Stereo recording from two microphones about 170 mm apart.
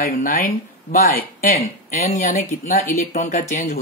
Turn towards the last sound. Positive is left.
turn(degrees=50)  # may be behind; listen again after turning